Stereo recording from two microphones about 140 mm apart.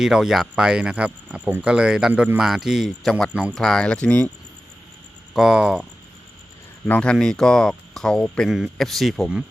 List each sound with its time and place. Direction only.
0.0 s speech: 5° right (ahead or behind)
5.3 s speech: 5° right (ahead or behind)
6.8 s speech: 10° left (ahead or behind)